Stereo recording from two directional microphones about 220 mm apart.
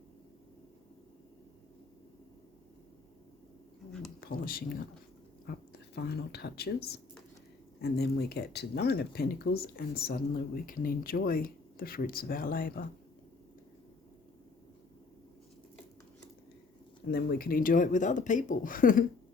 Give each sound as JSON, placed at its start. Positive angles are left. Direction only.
{"t": 4.2, "sound": "speech", "side_deg": 40}
{"t": 17.1, "sound": "speech", "side_deg": 45}